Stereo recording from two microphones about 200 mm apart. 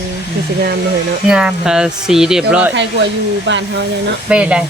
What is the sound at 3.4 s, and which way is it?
Speech, 65° right (ahead or behind).